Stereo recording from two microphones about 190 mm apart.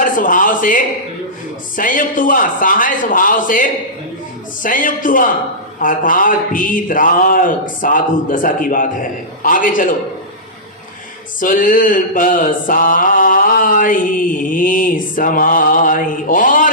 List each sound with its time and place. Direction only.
0.0 s mantra: 45° left (ahead or behind)
11.3 s mantra: 45° left (ahead or behind)